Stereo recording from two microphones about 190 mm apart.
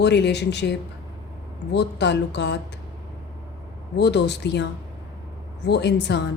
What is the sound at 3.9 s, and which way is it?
Speech, 65° left (ahead or behind).